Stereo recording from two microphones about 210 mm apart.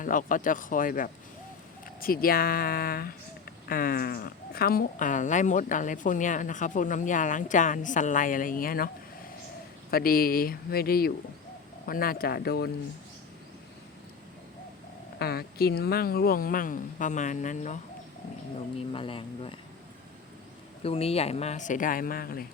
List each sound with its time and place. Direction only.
0.0 s speech: 40° left (ahead or behind)
9.9 s speech: 45° left (ahead or behind)
15.2 s speech: 50° left (ahead or behind)
18.9 s speech: 25° left (ahead or behind)
20.8 s speech: 25° left (ahead or behind); by 22.4 s 45° left (ahead or behind)